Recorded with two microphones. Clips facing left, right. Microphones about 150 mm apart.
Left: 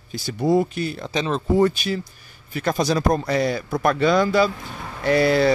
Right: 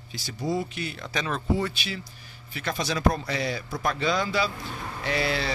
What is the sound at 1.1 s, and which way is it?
Speech, 25° left (ahead or behind).